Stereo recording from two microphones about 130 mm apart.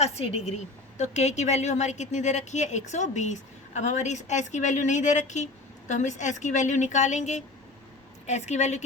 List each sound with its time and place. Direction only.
0.0 s a woman's voice: 55° left (ahead or behind)